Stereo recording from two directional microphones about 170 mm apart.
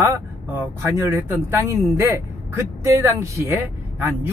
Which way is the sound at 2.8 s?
15° right (ahead or behind).